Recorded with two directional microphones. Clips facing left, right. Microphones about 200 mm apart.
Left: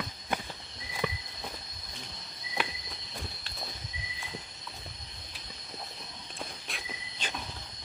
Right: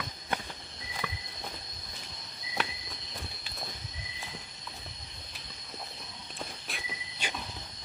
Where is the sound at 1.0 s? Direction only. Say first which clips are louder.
Left 7 dB; 15° left (ahead or behind).